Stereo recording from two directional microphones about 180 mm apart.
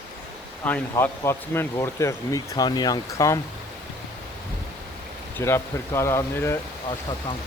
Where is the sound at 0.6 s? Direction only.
10° left (ahead or behind).